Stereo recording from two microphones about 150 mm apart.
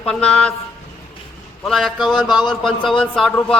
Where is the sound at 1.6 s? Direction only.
Centre (ahead or behind).